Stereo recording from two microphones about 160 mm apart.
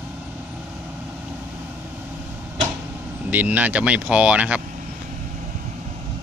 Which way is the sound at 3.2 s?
10° right (ahead or behind).